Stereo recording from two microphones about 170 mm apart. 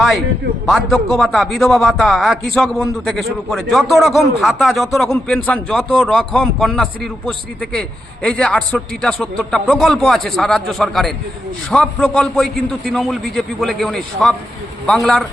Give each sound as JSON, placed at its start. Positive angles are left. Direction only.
{"t": 0.6, "sound": "a man's voice", "side_deg": 0}